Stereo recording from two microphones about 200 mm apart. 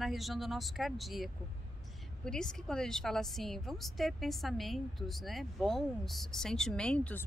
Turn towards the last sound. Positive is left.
turn(degrees=5)  # may be behind; listen again after turning